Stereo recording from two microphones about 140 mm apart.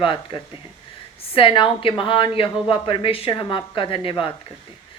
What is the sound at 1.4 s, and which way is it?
A woman's voice, 40° left (ahead or behind).